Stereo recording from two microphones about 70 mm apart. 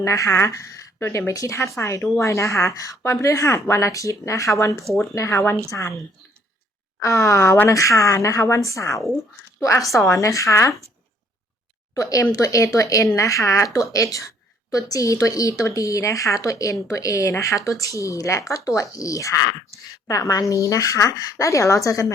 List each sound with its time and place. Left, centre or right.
0.0 s a woman's voice: left
7.0 s a woman's voice: left
11.9 s a woman's voice: left